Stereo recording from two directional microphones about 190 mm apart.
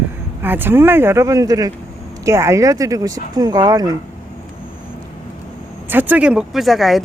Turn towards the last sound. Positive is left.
turn(degrees=0)  # may be behind; listen again after turning